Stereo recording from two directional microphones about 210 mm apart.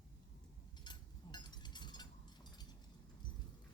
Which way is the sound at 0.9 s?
20° left (ahead or behind).